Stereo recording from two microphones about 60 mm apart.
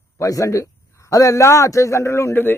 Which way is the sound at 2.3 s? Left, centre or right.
Left.